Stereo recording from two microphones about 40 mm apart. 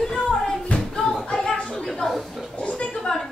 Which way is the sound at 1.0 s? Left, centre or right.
Centre.